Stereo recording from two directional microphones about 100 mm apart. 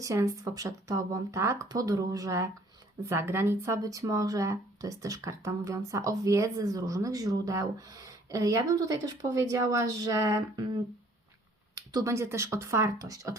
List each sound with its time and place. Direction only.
0.0 s speech: 30° right (ahead or behind)
11.7 s speech: 35° right (ahead or behind)